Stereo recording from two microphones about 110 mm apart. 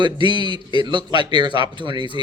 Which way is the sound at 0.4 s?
50° left (ahead or behind).